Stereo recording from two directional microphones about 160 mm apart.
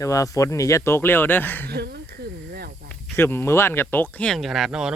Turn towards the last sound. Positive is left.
turn(degrees=-5)  # may be behind; listen again after turning